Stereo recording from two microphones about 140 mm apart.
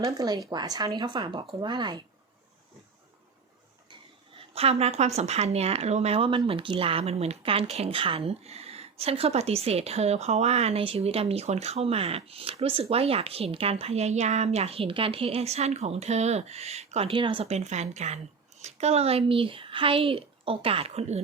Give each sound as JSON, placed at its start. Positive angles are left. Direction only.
{"t": 0.0, "sound": "speech", "side_deg": -25}
{"t": 4.5, "sound": "a woman's voice", "side_deg": -45}